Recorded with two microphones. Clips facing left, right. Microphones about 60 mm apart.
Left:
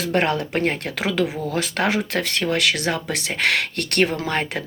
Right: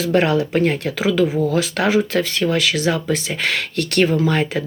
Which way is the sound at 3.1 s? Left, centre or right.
Left.